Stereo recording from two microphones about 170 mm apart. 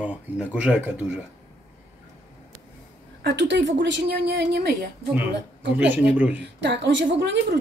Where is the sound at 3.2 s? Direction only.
90° right; by 4.9 s 70° right (ahead or behind).